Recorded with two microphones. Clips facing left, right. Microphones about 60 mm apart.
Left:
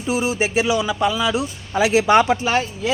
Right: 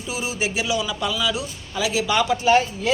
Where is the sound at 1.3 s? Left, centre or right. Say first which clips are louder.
Left 6 dB; left.